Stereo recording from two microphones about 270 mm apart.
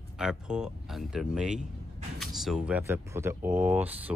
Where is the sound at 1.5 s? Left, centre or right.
Right.